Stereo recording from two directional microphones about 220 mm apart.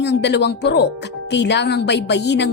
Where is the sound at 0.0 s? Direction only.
50° left (ahead or behind).